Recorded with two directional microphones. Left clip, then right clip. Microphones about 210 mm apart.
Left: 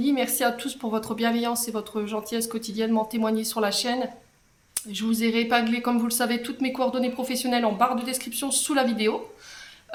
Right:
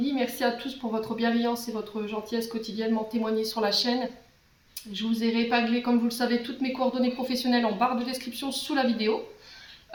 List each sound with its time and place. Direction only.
0.0 s a woman's voice: 50° left (ahead or behind)